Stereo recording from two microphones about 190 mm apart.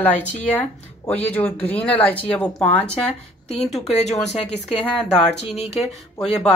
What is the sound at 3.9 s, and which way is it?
Speech, 35° left (ahead or behind).